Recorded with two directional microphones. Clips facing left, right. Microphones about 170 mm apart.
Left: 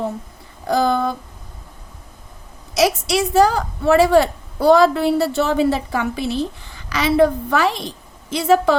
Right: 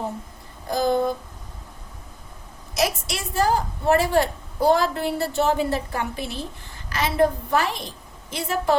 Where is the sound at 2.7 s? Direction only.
90° left.